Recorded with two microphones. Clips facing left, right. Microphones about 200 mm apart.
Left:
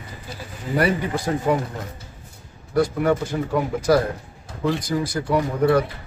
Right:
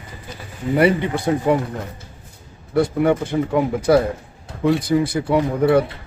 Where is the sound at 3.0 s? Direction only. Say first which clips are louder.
Right 3 dB; 20° right (ahead or behind).